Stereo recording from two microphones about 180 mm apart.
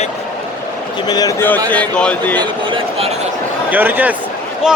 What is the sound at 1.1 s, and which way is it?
Speech, 20° left (ahead or behind).